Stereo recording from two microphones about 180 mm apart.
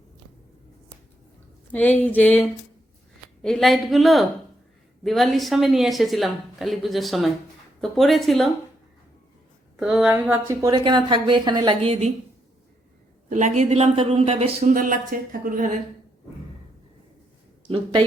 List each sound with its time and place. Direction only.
1.7 s a sound: 10° left (ahead or behind)
3.4 s a woman's voice: centre (ahead or behind)
9.7 s a woman's voice: 5° right (ahead or behind); by 12.1 s 35° right (ahead or behind)
13.3 s speech: 40° right (ahead or behind)